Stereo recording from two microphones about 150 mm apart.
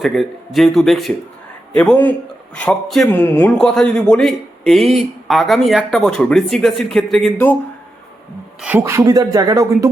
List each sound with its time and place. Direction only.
0.0 s speech: centre (ahead or behind)
8.8 s music: 20° right (ahead or behind)